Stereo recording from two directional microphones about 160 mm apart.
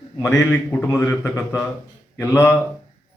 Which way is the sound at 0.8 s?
20° left (ahead or behind).